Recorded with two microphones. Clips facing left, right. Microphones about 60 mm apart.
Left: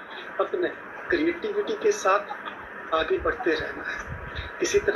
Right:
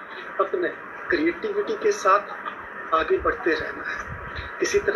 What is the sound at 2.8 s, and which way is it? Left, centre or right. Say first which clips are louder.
Speech: right 3 dB; right.